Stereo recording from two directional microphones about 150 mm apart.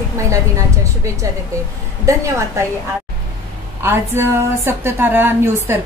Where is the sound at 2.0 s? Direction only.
20° right (ahead or behind).